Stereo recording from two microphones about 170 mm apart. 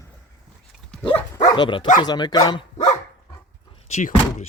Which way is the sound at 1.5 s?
25° left (ahead or behind).